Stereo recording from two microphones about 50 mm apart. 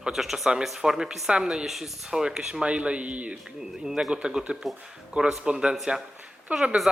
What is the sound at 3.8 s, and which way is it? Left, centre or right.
A man's voice, centre.